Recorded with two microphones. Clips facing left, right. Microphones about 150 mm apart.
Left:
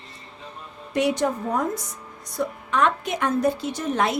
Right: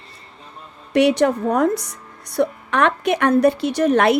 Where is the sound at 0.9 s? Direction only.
70° right (ahead or behind).